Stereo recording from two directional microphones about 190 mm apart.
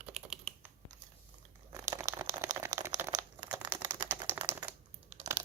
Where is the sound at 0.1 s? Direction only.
Centre (ahead or behind).